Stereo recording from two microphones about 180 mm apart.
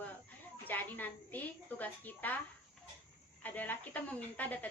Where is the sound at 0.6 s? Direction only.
10° left (ahead or behind).